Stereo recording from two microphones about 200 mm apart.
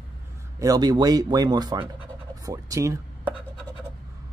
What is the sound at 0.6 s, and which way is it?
Speech, 20° right (ahead or behind).